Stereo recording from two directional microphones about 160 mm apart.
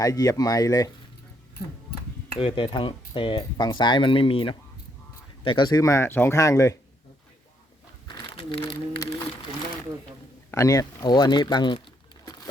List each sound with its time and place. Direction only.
0.0 s speech: 20° left (ahead or behind)
2.4 s speech: 35° left (ahead or behind)
8.0 s crumpling: 30° left (ahead or behind)
10.5 s speech: 20° left (ahead or behind)